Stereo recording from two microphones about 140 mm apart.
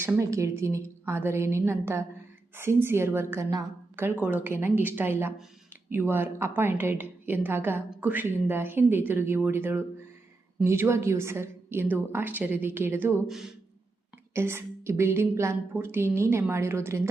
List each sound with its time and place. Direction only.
0.0 s a woman's voice: 20° right (ahead or behind)
13.2 s speech: 5° right (ahead or behind)
14.3 s a woman's voice: 20° right (ahead or behind)